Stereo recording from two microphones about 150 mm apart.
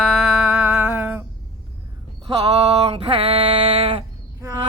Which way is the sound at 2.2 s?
40° right (ahead or behind).